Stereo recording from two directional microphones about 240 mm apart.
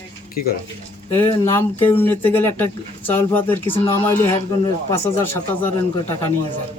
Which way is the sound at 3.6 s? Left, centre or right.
Left.